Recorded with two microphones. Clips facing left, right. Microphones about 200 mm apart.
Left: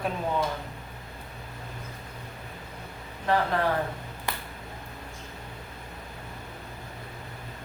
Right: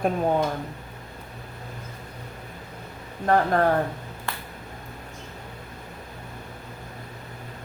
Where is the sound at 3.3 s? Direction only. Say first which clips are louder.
Right 5 dB; 50° right (ahead or behind).